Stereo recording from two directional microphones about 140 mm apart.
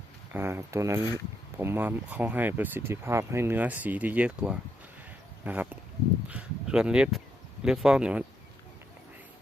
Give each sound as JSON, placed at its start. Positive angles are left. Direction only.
{"t": 0.3, "sound": "speech", "side_deg": -15}